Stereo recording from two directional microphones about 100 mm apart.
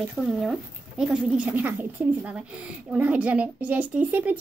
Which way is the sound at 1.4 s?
20° right (ahead or behind).